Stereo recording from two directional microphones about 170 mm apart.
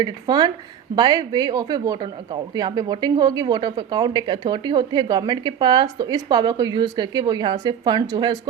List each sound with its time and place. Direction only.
0.0 s speech: 25° right (ahead or behind)